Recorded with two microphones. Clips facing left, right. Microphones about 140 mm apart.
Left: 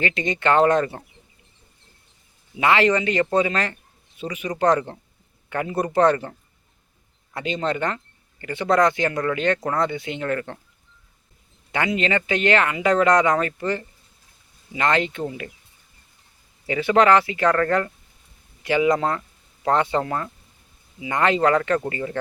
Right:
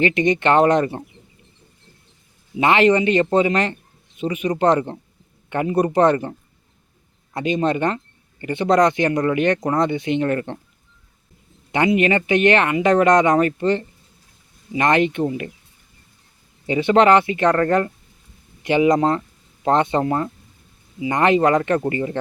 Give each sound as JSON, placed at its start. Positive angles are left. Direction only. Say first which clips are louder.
{"t": 0.0, "sound": "speech", "louder": "right 6 dB", "side_deg": -20}
{"t": 2.6, "sound": "speech", "louder": "right 3 dB", "side_deg": -20}
{"t": 7.3, "sound": "speech", "louder": "right 5 dB", "side_deg": -20}
{"t": 11.7, "sound": "speech", "louder": "right 5 dB", "side_deg": -20}
{"t": 16.6, "sound": "speech", "louder": "right 3 dB", "side_deg": -25}